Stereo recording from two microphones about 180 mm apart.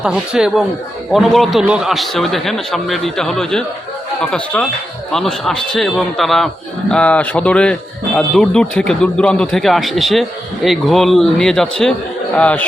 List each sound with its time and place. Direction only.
0.0 s a man's voice: 5° right (ahead or behind)